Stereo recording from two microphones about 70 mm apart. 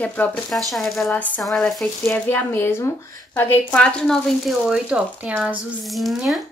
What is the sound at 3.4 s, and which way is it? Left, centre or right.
Speech, left.